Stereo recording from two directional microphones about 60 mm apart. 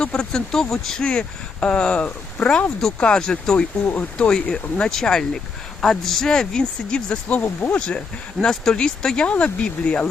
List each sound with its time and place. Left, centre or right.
0.0 s speech: centre
1.6 s speech: centre